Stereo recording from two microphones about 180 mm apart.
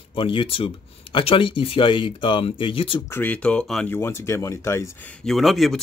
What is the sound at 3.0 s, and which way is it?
Speech, 10° left (ahead or behind).